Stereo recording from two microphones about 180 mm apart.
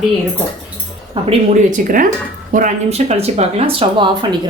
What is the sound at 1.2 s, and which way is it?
Speech, 30° right (ahead or behind).